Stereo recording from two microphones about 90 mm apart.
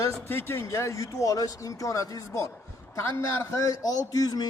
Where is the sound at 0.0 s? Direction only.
25° left (ahead or behind).